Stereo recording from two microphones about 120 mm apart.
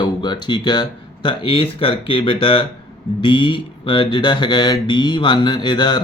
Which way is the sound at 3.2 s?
45° left (ahead or behind).